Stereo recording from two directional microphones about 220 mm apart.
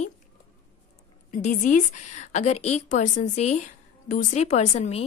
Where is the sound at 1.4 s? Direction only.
35° left (ahead or behind).